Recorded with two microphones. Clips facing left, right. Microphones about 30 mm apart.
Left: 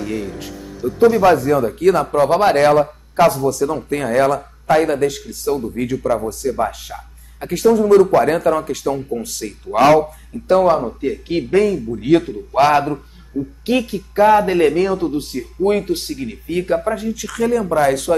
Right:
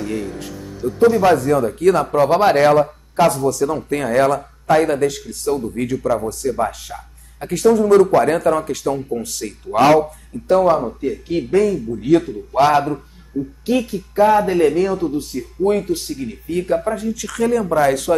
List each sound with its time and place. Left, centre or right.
0.0 s speech: centre
10.5 s speech: left
12.2 s a man's voice: centre
13.7 s speech: left
17.1 s speech: centre